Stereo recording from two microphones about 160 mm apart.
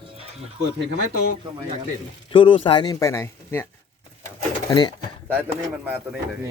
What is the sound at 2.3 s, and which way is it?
Speech, 35° left (ahead or behind).